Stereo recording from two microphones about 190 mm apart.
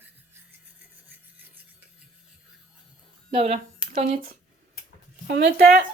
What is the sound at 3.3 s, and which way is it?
Speech, 35° right (ahead or behind).